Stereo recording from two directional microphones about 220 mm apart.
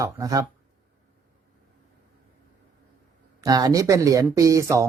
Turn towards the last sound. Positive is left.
turn(degrees=-15)  # may be behind; listen again after turning